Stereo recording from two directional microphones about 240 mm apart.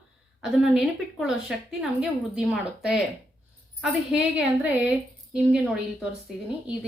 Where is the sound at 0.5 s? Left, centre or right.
Centre.